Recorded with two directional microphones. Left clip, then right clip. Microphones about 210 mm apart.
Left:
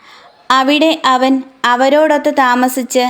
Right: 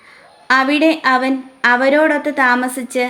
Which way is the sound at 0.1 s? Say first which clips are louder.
Left 2 dB; 30° left (ahead or behind).